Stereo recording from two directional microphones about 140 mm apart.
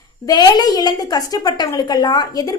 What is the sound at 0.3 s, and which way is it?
A woman's voice, 30° left (ahead or behind).